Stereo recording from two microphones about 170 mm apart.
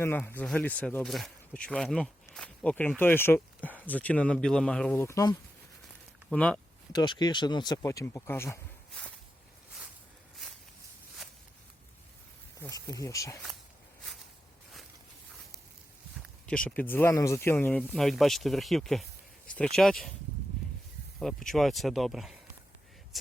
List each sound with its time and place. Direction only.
0.0 s speech: 10° left (ahead or behind)
5.0 s speech: 20° left (ahead or behind)
6.3 s speech: 5° left (ahead or behind)
6.9 s speech: 25° left (ahead or behind)
12.6 s speech: 20° left (ahead or behind)
16.5 s speech: 5° left (ahead or behind)
21.2 s speech: centre (ahead or behind)